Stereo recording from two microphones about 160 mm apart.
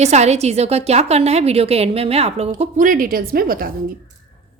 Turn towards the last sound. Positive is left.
turn(degrees=-65)  # may be behind; listen again after turning